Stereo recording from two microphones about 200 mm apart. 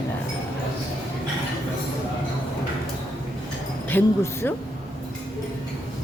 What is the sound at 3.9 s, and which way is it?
Speech, 10° left (ahead or behind).